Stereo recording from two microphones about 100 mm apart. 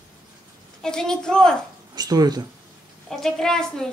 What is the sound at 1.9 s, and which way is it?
Speech, 40° right (ahead or behind).